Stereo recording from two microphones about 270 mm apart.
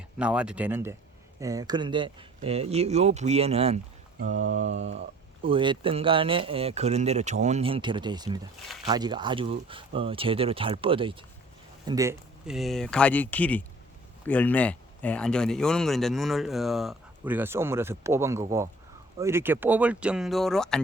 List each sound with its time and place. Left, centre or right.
0.2 s speech: centre